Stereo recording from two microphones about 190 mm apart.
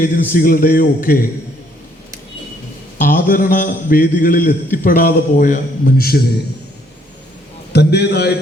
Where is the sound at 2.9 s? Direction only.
45° left (ahead or behind).